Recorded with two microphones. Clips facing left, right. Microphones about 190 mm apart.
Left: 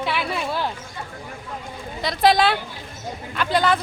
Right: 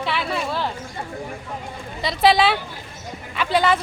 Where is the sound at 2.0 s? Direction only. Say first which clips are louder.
Right 1 dB; 5° right (ahead or behind).